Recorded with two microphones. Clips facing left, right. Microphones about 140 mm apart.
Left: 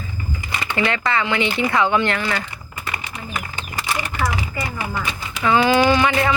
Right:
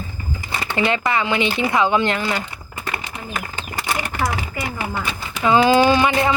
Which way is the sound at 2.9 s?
45° right (ahead or behind).